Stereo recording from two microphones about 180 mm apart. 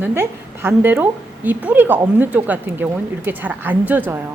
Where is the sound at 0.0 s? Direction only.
10° right (ahead or behind).